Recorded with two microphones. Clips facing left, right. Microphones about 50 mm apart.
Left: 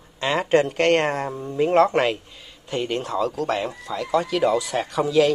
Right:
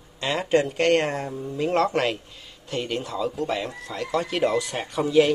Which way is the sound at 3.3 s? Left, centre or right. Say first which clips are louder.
Left 3 dB; left.